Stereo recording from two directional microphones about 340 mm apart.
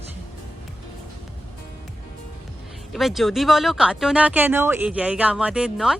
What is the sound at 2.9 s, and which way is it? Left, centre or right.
Speech, centre.